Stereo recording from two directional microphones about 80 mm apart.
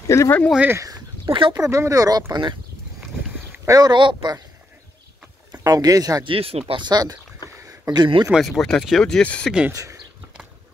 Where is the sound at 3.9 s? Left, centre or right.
Right.